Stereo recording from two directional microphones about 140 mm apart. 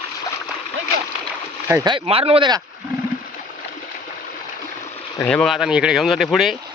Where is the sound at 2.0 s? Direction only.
45° right (ahead or behind).